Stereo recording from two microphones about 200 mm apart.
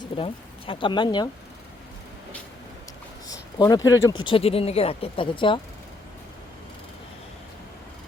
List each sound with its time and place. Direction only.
0.0 s speech: 25° left (ahead or behind)
3.2 s a sound: 20° left (ahead or behind)
3.8 s speech: 15° left (ahead or behind)
4.2 s speech: 25° left (ahead or behind)